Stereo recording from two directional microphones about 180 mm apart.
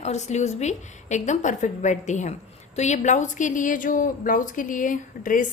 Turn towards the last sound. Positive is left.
turn(degrees=45)  # may be behind; listen again after turning